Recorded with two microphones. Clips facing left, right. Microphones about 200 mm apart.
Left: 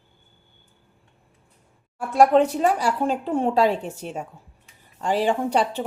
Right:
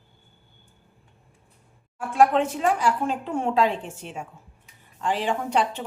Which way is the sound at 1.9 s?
40° left (ahead or behind).